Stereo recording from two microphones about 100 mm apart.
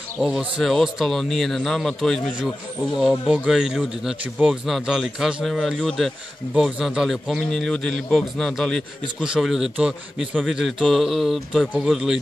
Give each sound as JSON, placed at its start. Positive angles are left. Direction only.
{"t": 0.6, "sound": "a man's voice", "side_deg": 0}
{"t": 9.2, "sound": "a man's voice", "side_deg": -5}